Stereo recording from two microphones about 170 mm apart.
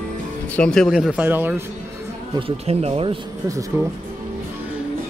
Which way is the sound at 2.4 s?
35° right (ahead or behind).